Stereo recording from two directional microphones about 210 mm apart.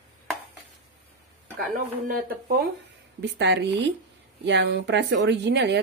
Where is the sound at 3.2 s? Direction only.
55° right (ahead or behind).